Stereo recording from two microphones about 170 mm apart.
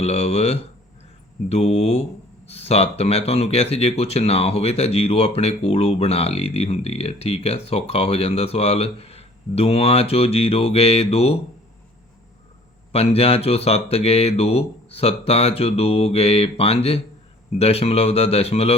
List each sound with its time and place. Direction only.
0.0 s speech: 40° left (ahead or behind)
12.9 s speech: 35° left (ahead or behind)